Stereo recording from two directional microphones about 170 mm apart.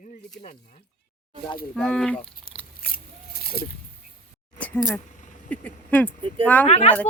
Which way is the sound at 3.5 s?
60° left (ahead or behind).